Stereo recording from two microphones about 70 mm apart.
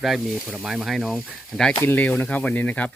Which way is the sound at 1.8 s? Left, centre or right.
Left.